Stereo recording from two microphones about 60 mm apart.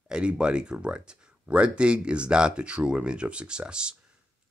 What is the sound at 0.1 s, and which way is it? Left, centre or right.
Speech, centre.